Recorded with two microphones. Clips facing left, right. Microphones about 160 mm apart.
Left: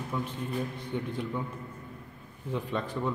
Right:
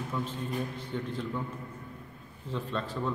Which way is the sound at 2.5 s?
15° left (ahead or behind).